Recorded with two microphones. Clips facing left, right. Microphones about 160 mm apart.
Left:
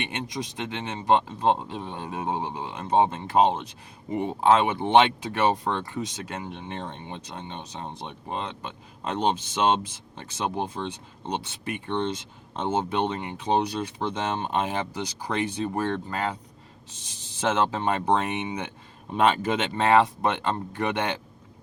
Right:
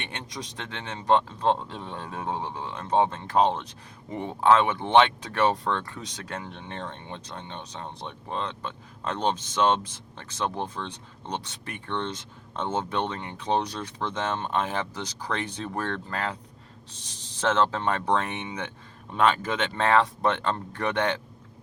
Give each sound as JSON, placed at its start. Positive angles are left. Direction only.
{"t": 0.5, "sound": "speech", "side_deg": 10}
{"t": 17.4, "sound": "speech", "side_deg": 10}